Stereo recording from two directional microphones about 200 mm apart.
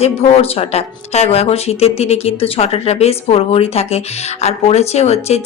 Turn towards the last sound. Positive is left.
turn(degrees=30)  # may be behind; listen again after turning